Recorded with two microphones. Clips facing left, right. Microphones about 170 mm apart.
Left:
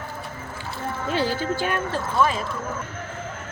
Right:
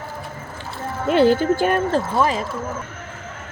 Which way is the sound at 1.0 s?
60° right (ahead or behind).